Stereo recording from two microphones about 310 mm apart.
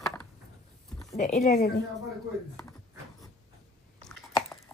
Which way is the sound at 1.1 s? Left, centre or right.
Left.